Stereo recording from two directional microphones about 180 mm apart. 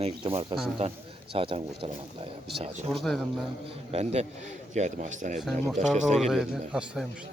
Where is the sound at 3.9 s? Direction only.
35° right (ahead or behind).